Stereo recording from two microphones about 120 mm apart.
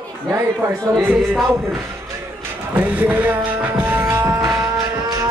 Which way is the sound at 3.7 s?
15° right (ahead or behind).